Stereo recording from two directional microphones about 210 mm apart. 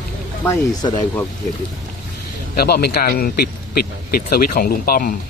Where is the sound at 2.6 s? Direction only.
50° left (ahead or behind).